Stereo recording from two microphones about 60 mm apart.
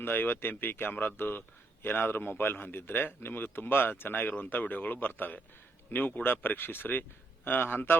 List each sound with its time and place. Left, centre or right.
0.0 s a man's voice: left